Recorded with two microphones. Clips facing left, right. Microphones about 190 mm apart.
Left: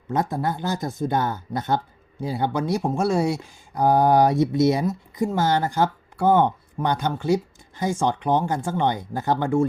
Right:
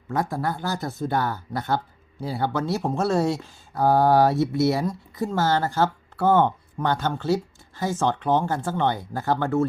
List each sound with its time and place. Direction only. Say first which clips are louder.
0.1 s speech: left 2 dB; 20° left (ahead or behind)